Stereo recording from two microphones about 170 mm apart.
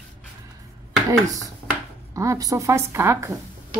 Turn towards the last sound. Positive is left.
turn(degrees=-15)  # may be behind; listen again after turning